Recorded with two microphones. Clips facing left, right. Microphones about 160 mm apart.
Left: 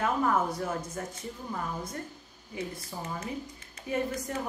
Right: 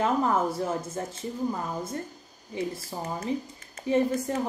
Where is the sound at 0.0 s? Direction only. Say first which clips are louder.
Right 3 dB; 25° right (ahead or behind).